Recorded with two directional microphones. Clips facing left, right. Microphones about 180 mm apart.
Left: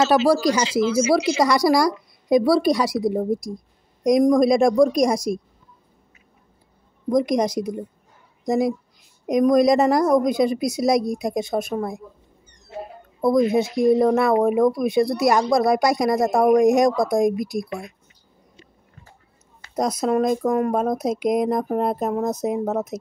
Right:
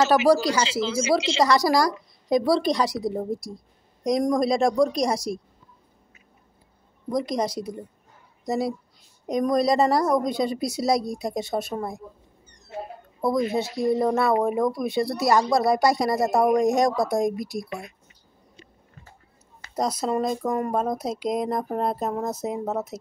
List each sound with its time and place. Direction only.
0.3 s a woman's voice: 15° left (ahead or behind)
0.7 s speech: 30° right (ahead or behind)
1.4 s a woman's voice: 10° left (ahead or behind)
7.1 s a woman's voice: 15° left (ahead or behind)
13.7 s a woman's voice: 15° left (ahead or behind)
16.2 s speech: 5° right (ahead or behind)
16.5 s a woman's voice: 15° left (ahead or behind)
20.1 s a woman's voice: 15° left (ahead or behind)